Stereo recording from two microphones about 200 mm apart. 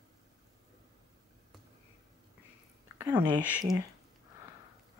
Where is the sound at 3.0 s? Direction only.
20° right (ahead or behind).